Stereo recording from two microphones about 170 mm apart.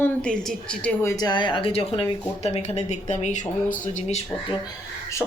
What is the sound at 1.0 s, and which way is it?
Speech, 20° left (ahead or behind).